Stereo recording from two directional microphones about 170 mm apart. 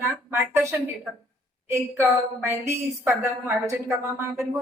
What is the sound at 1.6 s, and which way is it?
A woman's voice, 15° right (ahead or behind).